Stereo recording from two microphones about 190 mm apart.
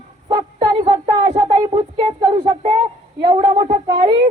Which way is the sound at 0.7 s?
30° right (ahead or behind).